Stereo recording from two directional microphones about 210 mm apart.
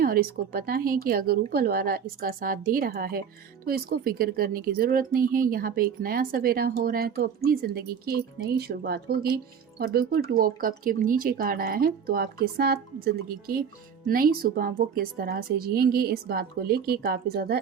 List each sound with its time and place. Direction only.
0.0 s speech: 45° right (ahead or behind)